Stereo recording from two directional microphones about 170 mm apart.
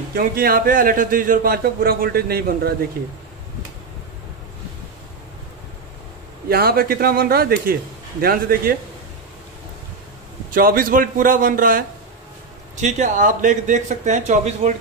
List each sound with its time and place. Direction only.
0.1 s a man's voice: 60° right (ahead or behind)
6.5 s a man's voice: 60° right (ahead or behind)
10.5 s a man's voice: 55° right (ahead or behind)
12.8 s speech: 45° right (ahead or behind)